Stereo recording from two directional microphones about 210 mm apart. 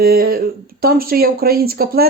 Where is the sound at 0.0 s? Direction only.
45° right (ahead or behind).